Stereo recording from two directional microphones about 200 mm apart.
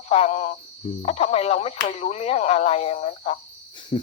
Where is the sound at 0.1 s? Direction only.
30° left (ahead or behind).